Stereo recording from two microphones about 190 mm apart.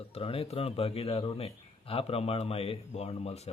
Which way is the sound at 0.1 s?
30° left (ahead or behind).